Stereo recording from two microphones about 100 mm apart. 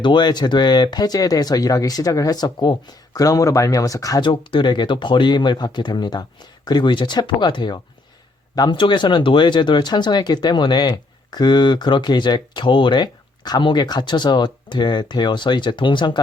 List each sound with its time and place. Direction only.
0.0 s speech: 50° left (ahead or behind)
4.2 s speech: 55° left (ahead or behind)